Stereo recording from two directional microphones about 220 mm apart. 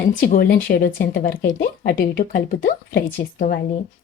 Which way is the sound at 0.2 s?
40° left (ahead or behind).